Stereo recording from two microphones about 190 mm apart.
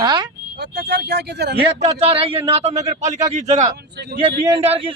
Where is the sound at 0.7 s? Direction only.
60° right (ahead or behind).